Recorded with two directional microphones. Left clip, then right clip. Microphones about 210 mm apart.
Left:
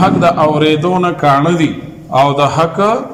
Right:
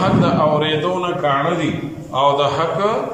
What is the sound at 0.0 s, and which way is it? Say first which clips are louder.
A man's voice: left 6 dB; 45° left (ahead or behind).